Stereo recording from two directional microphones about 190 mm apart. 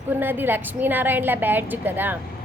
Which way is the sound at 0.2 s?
10° right (ahead or behind).